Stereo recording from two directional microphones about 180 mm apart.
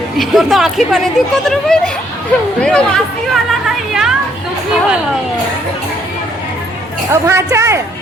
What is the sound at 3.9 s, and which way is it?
Chatter, 5° right (ahead or behind).